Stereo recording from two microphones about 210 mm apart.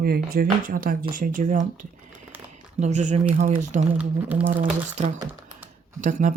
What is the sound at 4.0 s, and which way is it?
Speech, 5° right (ahead or behind).